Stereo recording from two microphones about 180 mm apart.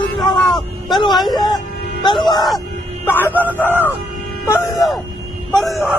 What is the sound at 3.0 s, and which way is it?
Speech, 10° left (ahead or behind).